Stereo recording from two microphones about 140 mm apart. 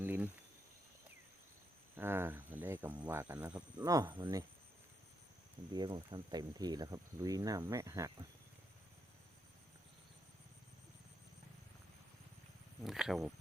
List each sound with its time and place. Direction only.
0.0 s a sound: 10° right (ahead or behind)
2.0 s speech: 15° right (ahead or behind)
3.5 s speech: 25° right (ahead or behind)
5.7 s speech: 30° right (ahead or behind)
12.8 s speech: centre (ahead or behind)